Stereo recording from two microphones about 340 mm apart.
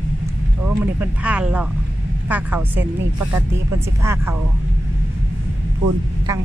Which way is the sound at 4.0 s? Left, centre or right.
Centre.